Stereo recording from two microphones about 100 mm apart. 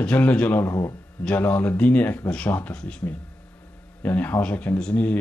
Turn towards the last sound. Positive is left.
turn(degrees=15)  # may be behind; listen again after turning